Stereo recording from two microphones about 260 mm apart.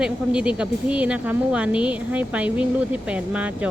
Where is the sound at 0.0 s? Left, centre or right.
Centre.